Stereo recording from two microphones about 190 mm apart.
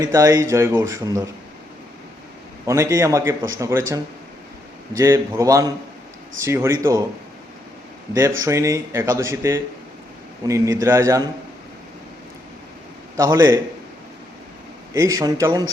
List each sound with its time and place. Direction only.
0.0 s a man's voice: 15° right (ahead or behind)
2.6 s a man's voice: 15° right (ahead or behind)
8.4 s a man's voice: 15° right (ahead or behind)
13.1 s a man's voice: 15° right (ahead or behind)
14.9 s a man's voice: 15° right (ahead or behind)